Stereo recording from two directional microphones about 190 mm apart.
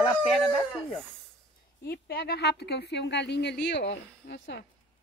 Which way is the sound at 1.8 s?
55° left (ahead or behind).